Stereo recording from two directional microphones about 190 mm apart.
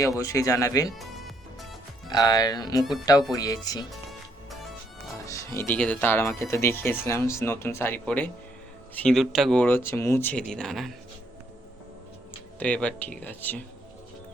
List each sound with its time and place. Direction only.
0.2 s speech: 15° left (ahead or behind)
0.9 s music: centre (ahead or behind)
2.0 s speech: 20° left (ahead or behind)
5.3 s speech: 15° left (ahead or behind)
12.5 s speech: 5° left (ahead or behind)